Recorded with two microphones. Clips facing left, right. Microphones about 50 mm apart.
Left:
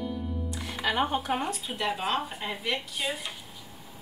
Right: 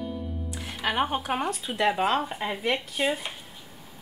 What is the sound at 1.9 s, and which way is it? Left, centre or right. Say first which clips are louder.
Speech: right 5 dB; right.